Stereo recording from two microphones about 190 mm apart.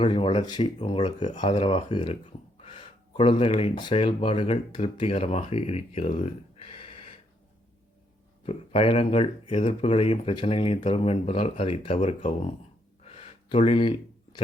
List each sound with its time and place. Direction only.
0.0 s speech: 25° left (ahead or behind)
8.4 s speech: 30° left (ahead or behind)
13.0 s gasp: 30° left (ahead or behind)